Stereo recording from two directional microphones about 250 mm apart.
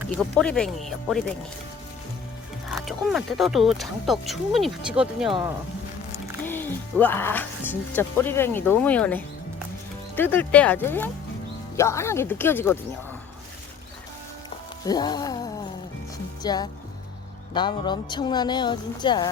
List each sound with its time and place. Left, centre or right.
0.2 s speech: centre
2.6 s speech: centre
7.0 s speech: centre
14.8 s music: centre
16.4 s speech: centre